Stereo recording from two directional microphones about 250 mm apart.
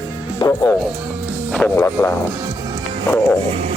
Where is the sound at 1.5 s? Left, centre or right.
Centre.